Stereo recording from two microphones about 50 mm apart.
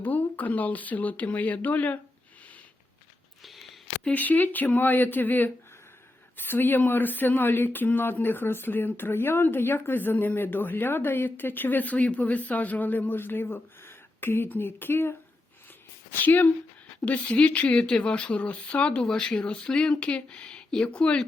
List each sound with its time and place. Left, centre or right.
0.0 s speech: left
4.1 s speech: left
16.2 s speech: left
17.2 s speech: left
19.0 s speech: centre